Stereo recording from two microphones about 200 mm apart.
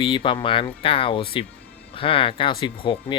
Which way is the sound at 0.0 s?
25° left (ahead or behind).